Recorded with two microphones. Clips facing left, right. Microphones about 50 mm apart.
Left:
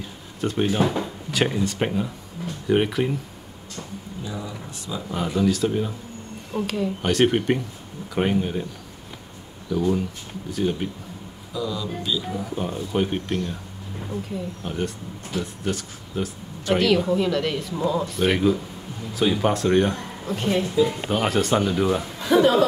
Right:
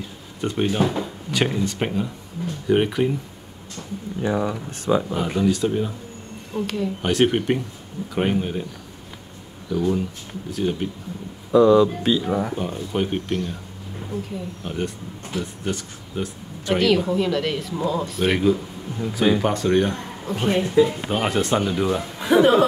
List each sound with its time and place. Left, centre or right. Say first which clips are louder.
0.4 s speech: even; centre
4.2 s speech: right 11 dB; right
5.4 s speech: even; centre
9.7 s speech: even; centre
11.5 s speech: right 14 dB; right
12.5 s speech: even; centre
20.4 s speech: right 4 dB; right
21.1 s speech: even; centre
22.2 s speech: right 2 dB; right